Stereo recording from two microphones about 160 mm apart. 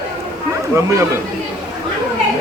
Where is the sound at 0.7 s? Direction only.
15° right (ahead or behind).